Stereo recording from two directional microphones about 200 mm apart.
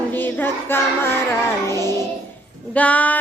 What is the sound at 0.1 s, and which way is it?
Child singing, 10° left (ahead or behind).